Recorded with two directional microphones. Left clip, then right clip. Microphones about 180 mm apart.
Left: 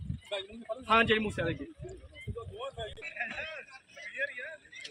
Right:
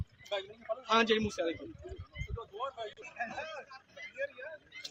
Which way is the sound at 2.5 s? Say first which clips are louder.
Right 2 dB; 25° left (ahead or behind).